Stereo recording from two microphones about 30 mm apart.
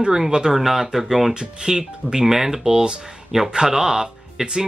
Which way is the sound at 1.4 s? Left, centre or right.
Right.